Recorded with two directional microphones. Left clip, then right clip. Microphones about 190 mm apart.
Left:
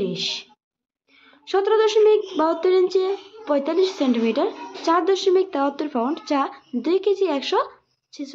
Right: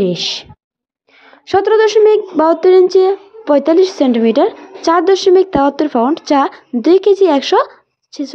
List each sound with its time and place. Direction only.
0.0 s a woman's voice: 40° right (ahead or behind)